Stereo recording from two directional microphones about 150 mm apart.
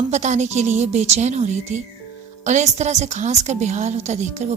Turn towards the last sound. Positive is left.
turn(degrees=-50)  # may be behind; listen again after turning